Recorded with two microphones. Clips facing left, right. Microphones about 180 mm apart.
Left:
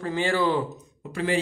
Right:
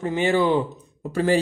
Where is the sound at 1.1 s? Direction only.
40° right (ahead or behind).